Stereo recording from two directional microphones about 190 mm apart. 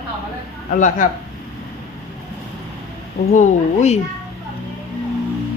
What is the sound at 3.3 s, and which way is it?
Speech, 40° left (ahead or behind).